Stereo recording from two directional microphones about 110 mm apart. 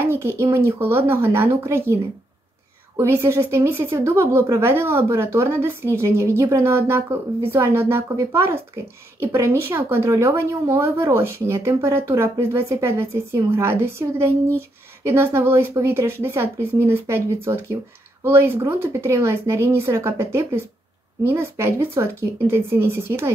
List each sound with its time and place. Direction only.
0.0 s speech: 20° right (ahead or behind)
3.0 s speech: 25° right (ahead or behind)